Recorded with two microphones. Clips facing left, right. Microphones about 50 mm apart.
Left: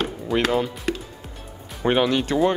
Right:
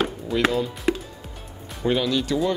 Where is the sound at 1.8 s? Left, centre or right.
Left.